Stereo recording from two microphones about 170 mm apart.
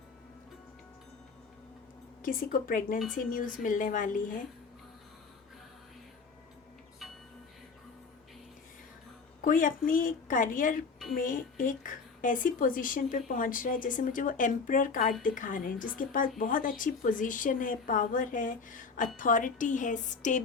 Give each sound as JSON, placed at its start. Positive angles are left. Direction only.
{"t": 2.2, "sound": "a woman's voice", "side_deg": 55}
{"t": 9.4, "sound": "a woman's voice", "side_deg": 55}